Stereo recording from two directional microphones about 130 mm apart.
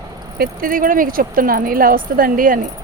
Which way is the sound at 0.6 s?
90° right.